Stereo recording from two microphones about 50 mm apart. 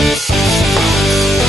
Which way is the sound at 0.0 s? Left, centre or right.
Centre.